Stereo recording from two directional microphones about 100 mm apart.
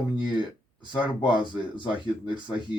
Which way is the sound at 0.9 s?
50° left (ahead or behind).